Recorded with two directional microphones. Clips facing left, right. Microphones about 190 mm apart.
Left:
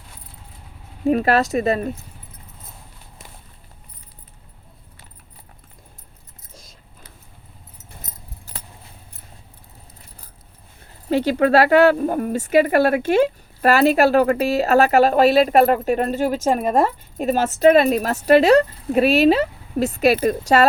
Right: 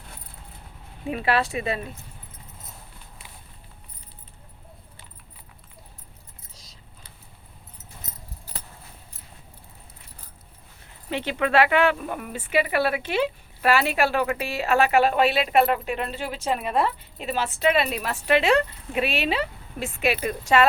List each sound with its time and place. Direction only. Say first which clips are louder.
1.0 s speech: left 7 dB; 45° left (ahead or behind)
6.5 s keys jangling: left 10 dB; 50° left (ahead or behind)
11.1 s speech: left 7 dB; 40° left (ahead or behind)